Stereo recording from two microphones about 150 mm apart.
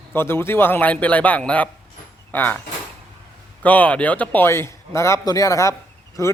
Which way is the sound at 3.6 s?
10° left (ahead or behind).